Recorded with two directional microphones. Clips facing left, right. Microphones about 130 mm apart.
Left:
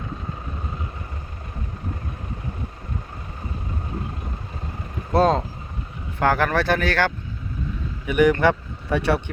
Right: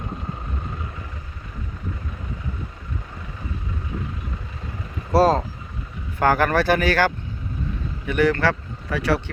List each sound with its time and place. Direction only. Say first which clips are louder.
5.1 s speech: right 1 dB; 5° right (ahead or behind)
8.0 s speech: left 2 dB; 15° left (ahead or behind)